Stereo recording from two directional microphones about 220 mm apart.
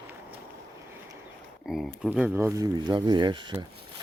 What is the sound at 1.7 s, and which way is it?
Speech, centre (ahead or behind).